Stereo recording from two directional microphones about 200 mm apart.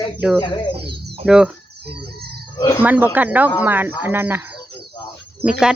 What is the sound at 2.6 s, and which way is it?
Speech, 20° left (ahead or behind).